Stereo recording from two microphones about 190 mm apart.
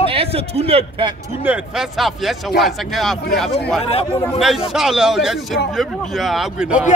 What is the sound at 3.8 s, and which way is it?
Speech, 30° left (ahead or behind).